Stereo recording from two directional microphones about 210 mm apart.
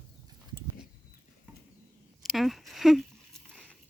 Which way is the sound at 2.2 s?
Centre (ahead or behind).